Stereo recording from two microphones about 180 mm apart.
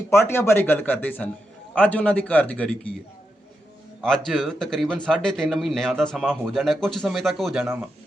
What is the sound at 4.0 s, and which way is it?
Speech, 5° left (ahead or behind).